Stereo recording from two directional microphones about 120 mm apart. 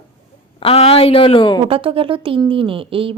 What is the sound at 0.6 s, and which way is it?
Speech, 55° left (ahead or behind).